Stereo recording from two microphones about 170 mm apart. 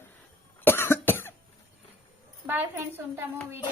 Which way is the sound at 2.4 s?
10° right (ahead or behind).